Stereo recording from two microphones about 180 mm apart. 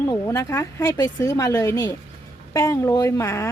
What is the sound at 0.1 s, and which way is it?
A woman's voice, 15° left (ahead or behind).